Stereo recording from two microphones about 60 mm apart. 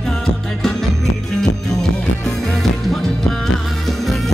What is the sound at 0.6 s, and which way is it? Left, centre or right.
Music, centre.